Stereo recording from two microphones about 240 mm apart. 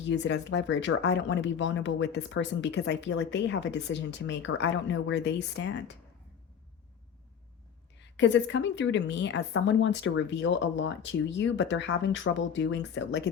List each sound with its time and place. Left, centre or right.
0.1 s speech: left
8.1 s speech: left